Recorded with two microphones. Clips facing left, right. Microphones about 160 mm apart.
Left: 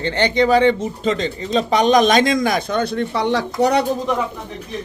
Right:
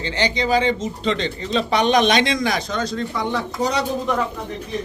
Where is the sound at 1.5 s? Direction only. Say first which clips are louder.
Left 3 dB; 40° left (ahead or behind); by 3.8 s 65° left (ahead or behind).